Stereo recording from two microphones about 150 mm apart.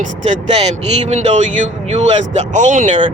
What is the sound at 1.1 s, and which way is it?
Speech, 50° right (ahead or behind).